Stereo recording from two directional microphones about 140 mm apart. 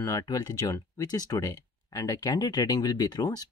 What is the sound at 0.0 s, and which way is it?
Speech, 25° left (ahead or behind).